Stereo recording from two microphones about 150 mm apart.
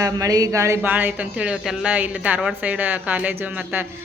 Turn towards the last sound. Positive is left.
turn(degrees=-15)  # may be behind; listen again after turning